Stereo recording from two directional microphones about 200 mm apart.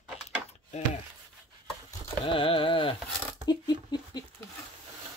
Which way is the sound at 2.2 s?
25° left (ahead or behind).